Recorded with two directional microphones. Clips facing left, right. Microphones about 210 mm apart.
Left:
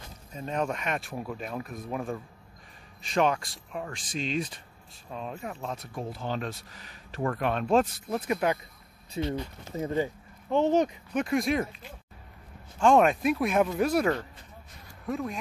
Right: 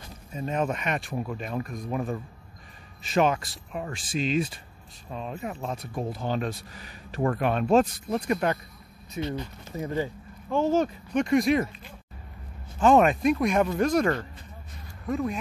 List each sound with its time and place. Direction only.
0.3 s speech: 5° right (ahead or behind)
9.1 s speech: 30° left (ahead or behind)
11.1 s speech: centre (ahead or behind)
12.7 s speech: 5° right (ahead or behind)